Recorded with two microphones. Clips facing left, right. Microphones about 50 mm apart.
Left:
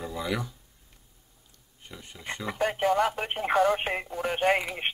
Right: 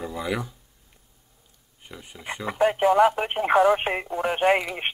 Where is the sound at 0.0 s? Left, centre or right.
Centre.